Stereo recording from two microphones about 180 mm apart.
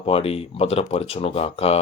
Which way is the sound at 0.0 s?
30° left (ahead or behind).